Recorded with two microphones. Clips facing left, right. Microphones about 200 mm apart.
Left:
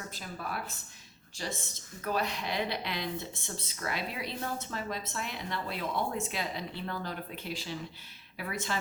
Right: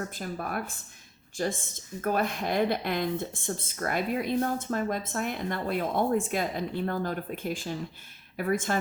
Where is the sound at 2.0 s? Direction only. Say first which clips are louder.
Right 5 dB; 50° right (ahead or behind).